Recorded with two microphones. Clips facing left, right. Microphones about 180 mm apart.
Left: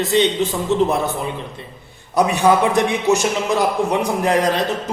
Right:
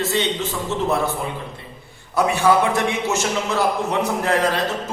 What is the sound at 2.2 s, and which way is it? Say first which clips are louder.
A man's voice: left 2 dB; 20° left (ahead or behind).